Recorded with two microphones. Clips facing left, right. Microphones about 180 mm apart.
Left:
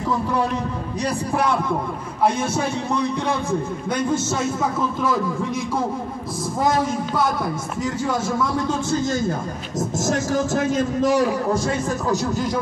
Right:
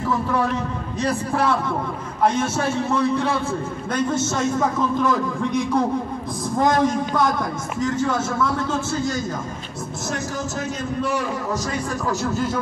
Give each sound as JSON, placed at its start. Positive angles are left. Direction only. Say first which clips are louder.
{"t": 1.0, "sound": "a man's voice", "louder": "right 1 dB", "side_deg": 15}
{"t": 10.0, "sound": "a man's voice", "louder": "left 5 dB", "side_deg": 50}